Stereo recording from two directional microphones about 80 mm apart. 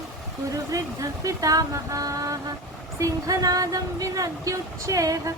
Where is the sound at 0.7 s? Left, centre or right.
Right.